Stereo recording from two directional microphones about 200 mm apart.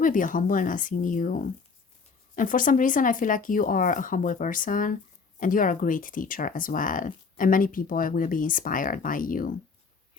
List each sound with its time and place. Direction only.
0.0 s speech: 40° left (ahead or behind)